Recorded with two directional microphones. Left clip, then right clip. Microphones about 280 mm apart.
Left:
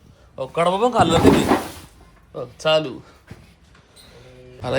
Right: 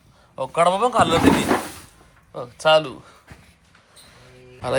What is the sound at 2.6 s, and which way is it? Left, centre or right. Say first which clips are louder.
Speech: right 2 dB; centre.